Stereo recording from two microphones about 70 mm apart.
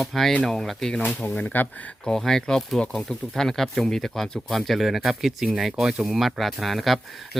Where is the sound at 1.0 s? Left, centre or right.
Left.